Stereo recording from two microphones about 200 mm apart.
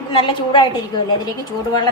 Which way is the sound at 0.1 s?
25° left (ahead or behind).